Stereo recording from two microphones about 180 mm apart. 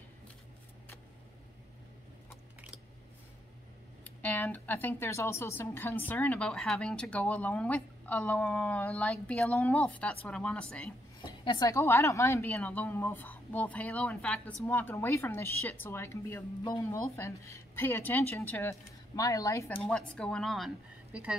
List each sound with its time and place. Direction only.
4.0 s speech: 10° left (ahead or behind)
11.2 s a woman's voice: 25° left (ahead or behind)
11.7 s speech: 15° left (ahead or behind)
19.8 s speech: 5° left (ahead or behind)